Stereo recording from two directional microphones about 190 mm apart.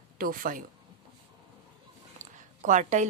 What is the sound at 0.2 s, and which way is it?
Speech, 45° right (ahead or behind).